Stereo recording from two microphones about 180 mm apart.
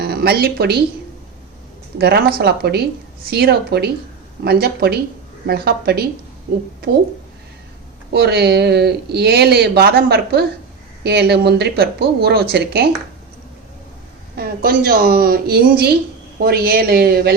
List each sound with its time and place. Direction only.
0.0 s speech: 60° right (ahead or behind)
2.0 s speech: 65° right (ahead or behind)
8.1 s speech: 65° right (ahead or behind)
14.3 s speech: 55° right (ahead or behind)